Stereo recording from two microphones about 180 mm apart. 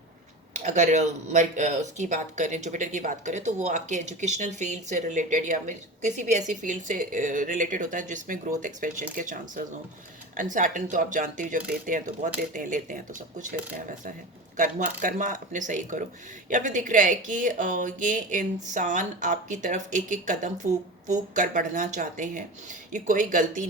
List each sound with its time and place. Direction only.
0.5 s speech: 40° right (ahead or behind)